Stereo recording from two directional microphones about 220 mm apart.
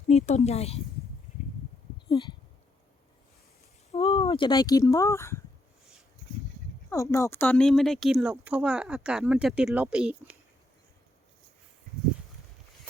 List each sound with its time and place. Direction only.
0.1 s speech: 30° left (ahead or behind)
2.0 s speech: 20° left (ahead or behind)
3.9 s speech: 25° left (ahead or behind)
6.9 s speech: 15° left (ahead or behind); by 10.3 s 5° right (ahead or behind)